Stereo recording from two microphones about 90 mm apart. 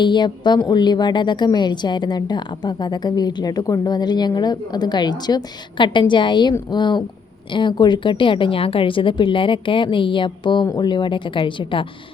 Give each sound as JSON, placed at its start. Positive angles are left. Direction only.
{"t": 0.0, "sound": "a woman's voice", "side_deg": 60}